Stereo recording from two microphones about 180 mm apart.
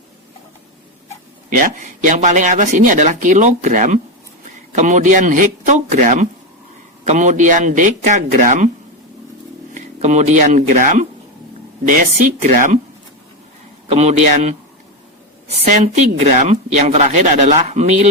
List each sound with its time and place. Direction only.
1.5 s speech: 50° right (ahead or behind)
9.7 s speech: 40° right (ahead or behind)
13.9 s speech: 40° right (ahead or behind)
15.6 s speech: 45° right (ahead or behind)